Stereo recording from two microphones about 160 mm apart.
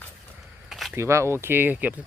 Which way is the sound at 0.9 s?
15° right (ahead or behind).